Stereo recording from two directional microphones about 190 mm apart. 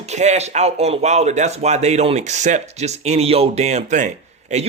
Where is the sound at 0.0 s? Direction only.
35° right (ahead or behind).